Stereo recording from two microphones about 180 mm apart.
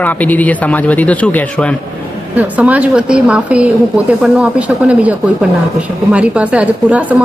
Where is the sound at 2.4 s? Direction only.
10° right (ahead or behind).